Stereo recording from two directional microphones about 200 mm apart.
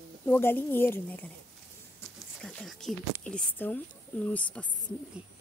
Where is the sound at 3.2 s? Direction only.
5° left (ahead or behind).